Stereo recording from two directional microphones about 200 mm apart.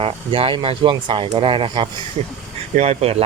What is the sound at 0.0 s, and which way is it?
Speech, 25° right (ahead or behind).